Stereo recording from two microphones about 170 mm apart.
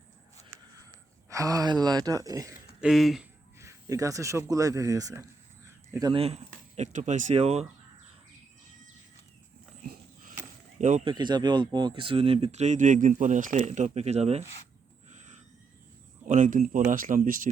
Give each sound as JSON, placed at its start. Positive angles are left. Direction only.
{"t": 0.9, "sound": "speech", "side_deg": -20}
{"t": 2.8, "sound": "speech", "side_deg": 0}
{"t": 3.6, "sound": "speech", "side_deg": -20}
{"t": 6.1, "sound": "speech", "side_deg": -40}
{"t": 10.8, "sound": "speech", "side_deg": -45}
{"t": 11.0, "sound": "speech", "side_deg": -25}
{"t": 15.1, "sound": "owl", "side_deg": -45}
{"t": 16.2, "sound": "speech", "side_deg": -50}